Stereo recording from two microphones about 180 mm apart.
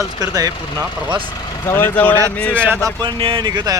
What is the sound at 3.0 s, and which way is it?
Speech, 25° right (ahead or behind).